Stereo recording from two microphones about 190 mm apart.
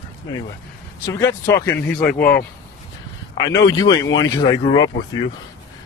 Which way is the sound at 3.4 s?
20° left (ahead or behind).